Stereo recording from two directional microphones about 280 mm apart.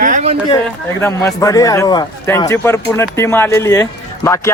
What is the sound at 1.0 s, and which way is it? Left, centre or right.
A man's voice, centre.